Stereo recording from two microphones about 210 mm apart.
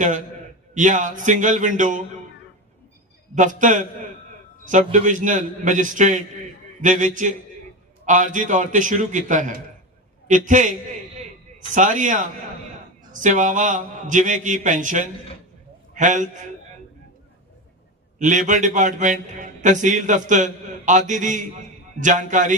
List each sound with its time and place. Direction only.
0.7 s a man's voice: 35° right (ahead or behind)
3.3 s a man's voice: 35° right (ahead or behind)
18.2 s a man's voice: 35° right (ahead or behind)